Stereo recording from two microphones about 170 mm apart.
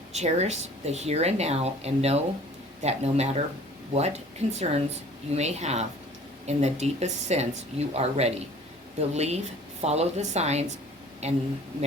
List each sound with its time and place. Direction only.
0.1 s speech: 40° right (ahead or behind)